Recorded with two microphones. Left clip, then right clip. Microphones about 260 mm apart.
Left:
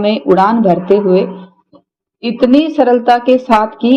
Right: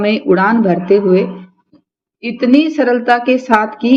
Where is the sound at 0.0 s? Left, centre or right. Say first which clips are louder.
Left 2 dB; centre.